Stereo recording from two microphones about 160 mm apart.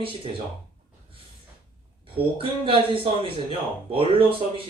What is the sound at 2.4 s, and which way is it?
Speech, 35° right (ahead or behind).